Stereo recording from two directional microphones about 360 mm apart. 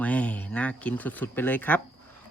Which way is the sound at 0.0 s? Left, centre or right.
Centre.